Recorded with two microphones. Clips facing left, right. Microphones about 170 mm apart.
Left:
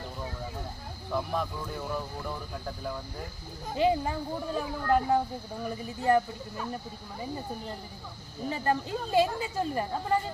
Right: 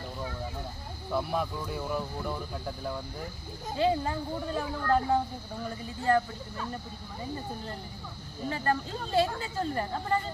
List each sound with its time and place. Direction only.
1.1 s speech: 5° right (ahead or behind)
3.8 s speech: 15° left (ahead or behind)
8.4 s speech: 15° left (ahead or behind)